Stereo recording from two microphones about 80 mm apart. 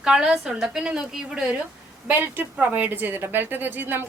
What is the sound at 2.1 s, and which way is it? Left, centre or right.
Speech, right.